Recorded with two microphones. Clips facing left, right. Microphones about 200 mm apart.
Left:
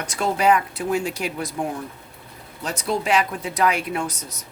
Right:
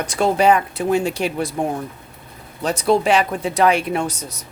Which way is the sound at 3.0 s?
30° right (ahead or behind).